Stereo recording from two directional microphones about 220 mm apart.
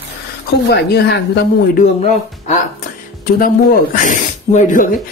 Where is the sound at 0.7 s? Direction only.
50° left (ahead or behind).